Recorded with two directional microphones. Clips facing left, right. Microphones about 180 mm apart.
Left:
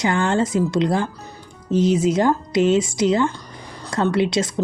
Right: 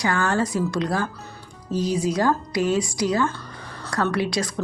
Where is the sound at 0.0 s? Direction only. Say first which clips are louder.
Left 3 dB; 20° left (ahead or behind).